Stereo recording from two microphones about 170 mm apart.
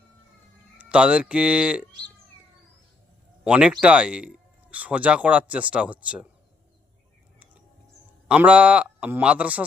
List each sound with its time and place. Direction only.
0.8 s speech: 5° right (ahead or behind)
3.4 s speech: 5° right (ahead or behind)
8.3 s speech: 5° right (ahead or behind)